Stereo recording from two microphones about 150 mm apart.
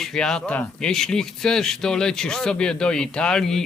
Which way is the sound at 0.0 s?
5° left (ahead or behind).